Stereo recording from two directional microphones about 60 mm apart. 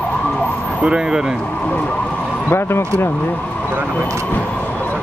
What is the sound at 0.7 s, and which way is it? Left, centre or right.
Speech, centre.